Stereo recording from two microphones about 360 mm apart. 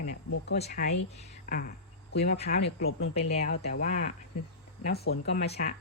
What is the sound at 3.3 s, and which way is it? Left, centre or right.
Speech, left.